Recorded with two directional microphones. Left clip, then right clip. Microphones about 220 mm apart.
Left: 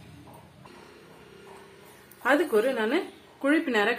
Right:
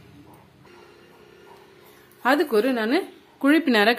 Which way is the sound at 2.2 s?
55° right (ahead or behind).